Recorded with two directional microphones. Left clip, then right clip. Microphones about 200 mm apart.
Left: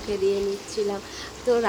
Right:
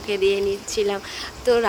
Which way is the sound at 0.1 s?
40° right (ahead or behind).